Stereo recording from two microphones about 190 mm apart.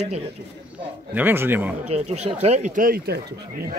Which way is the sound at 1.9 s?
35° right (ahead or behind).